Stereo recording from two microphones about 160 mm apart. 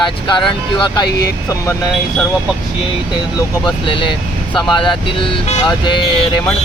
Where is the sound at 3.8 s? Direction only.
30° left (ahead or behind).